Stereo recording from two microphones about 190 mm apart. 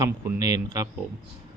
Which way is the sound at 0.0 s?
15° right (ahead or behind).